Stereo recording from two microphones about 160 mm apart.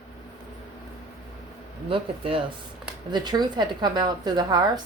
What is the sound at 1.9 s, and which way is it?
A woman's voice, 35° right (ahead or behind).